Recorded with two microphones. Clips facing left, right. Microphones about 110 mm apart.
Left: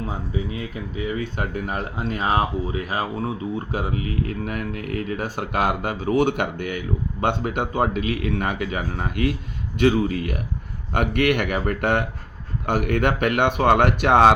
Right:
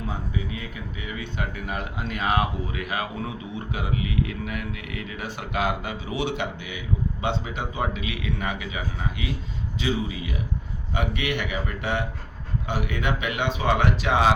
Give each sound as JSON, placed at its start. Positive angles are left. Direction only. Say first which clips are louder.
{"t": 0.9, "sound": "speech", "louder": "left 7 dB", "side_deg": 40}